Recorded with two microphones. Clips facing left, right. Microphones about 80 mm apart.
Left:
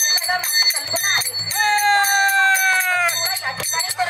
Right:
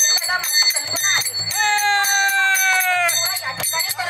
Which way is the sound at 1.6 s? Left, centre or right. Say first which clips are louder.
Left 2 dB; centre.